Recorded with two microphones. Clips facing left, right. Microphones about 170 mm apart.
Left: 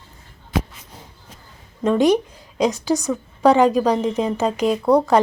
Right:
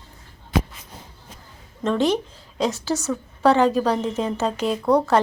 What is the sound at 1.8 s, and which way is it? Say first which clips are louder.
A woman's voice: left 5 dB; 15° left (ahead or behind).